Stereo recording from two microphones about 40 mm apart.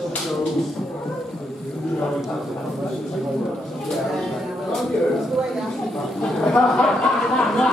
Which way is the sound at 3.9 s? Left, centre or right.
Centre.